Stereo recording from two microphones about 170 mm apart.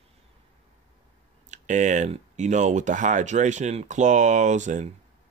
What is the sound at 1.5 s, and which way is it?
Speech, 45° right (ahead or behind).